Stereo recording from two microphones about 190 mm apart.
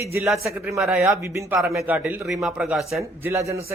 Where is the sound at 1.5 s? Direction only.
Centre (ahead or behind).